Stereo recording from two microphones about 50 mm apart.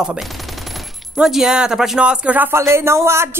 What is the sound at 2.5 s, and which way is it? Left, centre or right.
Speech, right.